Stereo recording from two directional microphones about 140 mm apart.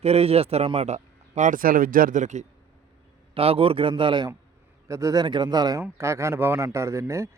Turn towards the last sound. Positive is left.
turn(degrees=-20)  # may be behind; listen again after turning